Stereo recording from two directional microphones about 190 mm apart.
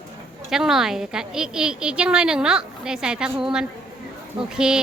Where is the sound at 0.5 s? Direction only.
Centre (ahead or behind).